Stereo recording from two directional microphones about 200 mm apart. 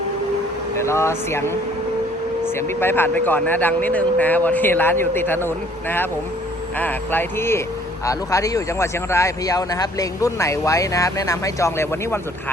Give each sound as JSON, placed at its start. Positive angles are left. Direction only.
{"t": 0.8, "sound": "speech", "side_deg": 15}
{"t": 2.6, "sound": "speech", "side_deg": 10}